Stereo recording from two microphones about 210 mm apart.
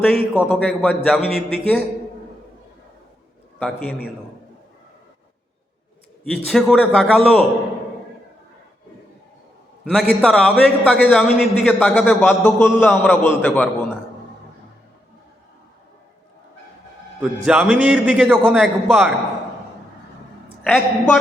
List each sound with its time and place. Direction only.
0.0 s a man's voice: 5° left (ahead or behind)
3.6 s a man's voice: 5° left (ahead or behind)
6.3 s a man's voice: centre (ahead or behind)
10.2 s a man's voice: 5° left (ahead or behind)
17.2 s a man's voice: 5° right (ahead or behind)
20.7 s a man's voice: centre (ahead or behind)